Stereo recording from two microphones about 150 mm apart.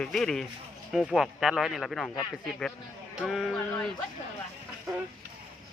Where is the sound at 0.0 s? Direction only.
5° left (ahead or behind).